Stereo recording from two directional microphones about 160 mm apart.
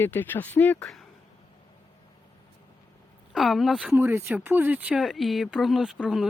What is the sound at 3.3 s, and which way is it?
Speech, centre (ahead or behind).